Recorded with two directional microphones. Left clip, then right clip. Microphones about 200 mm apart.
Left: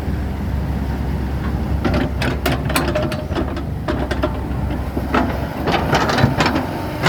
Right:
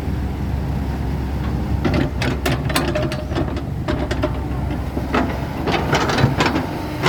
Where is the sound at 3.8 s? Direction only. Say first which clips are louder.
Left 1 dB; 20° right (ahead or behind).